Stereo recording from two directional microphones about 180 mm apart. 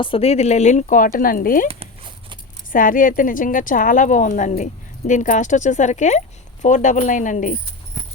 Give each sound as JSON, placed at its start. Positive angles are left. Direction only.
{"t": 0.0, "sound": "speech", "side_deg": 30}
{"t": 2.7, "sound": "a woman's voice", "side_deg": 50}